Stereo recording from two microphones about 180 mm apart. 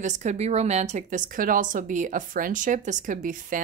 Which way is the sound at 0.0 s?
40° right (ahead or behind).